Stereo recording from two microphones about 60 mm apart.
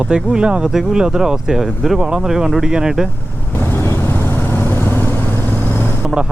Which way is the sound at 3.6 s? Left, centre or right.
Left.